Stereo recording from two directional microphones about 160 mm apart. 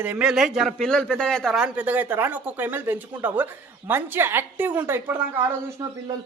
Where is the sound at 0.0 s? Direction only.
10° right (ahead or behind).